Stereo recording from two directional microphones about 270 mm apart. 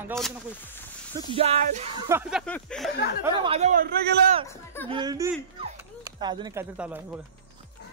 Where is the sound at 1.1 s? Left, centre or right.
Right; by 3.3 s centre.